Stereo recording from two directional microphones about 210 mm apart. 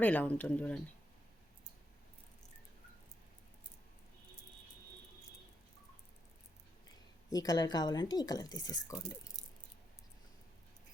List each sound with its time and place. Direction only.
0.0 s speech: 10° left (ahead or behind)
7.3 s speech: 15° left (ahead or behind)